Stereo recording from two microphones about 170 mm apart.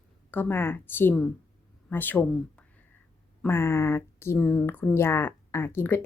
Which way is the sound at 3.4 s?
15° left (ahead or behind).